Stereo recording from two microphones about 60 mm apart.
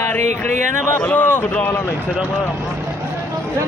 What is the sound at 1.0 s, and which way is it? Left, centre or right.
Speech, left.